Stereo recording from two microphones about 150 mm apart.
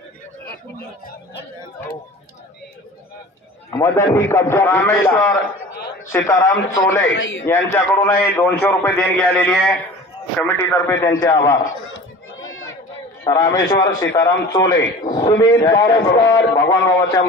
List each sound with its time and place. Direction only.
3.7 s a man's voice: 20° left (ahead or behind)
13.2 s a man's voice: 20° left (ahead or behind)